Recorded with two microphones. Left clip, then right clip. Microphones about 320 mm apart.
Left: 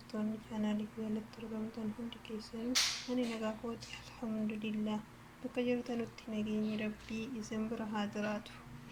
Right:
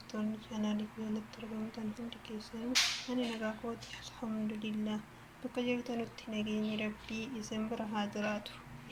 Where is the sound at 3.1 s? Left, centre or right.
Centre.